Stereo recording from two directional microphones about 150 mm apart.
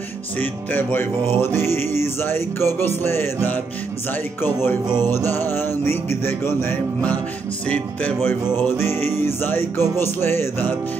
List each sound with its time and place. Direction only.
0.4 s music: 15° left (ahead or behind)
4.4 s music: 15° left (ahead or behind)